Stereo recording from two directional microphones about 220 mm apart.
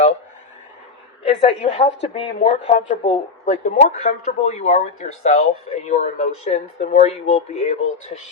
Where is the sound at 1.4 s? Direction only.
25° left (ahead or behind).